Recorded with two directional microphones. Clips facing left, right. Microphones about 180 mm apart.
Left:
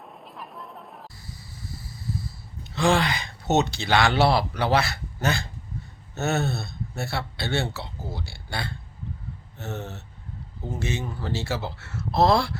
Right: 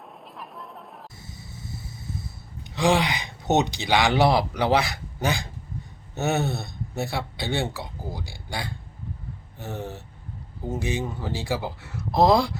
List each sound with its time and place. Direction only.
0.3 s chatter: centre (ahead or behind)
1.2 s a sound: 20° right (ahead or behind)
6.1 s speech: 15° right (ahead or behind)